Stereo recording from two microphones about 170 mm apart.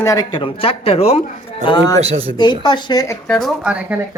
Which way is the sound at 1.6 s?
25° left (ahead or behind).